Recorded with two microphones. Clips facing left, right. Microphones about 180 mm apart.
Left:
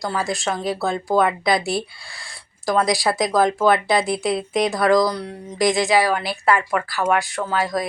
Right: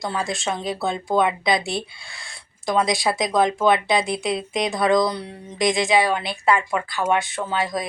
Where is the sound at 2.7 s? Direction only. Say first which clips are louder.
Left 2 dB; 20° right (ahead or behind).